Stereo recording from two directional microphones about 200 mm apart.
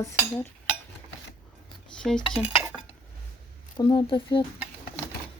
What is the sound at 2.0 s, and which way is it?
Speech, 5° left (ahead or behind).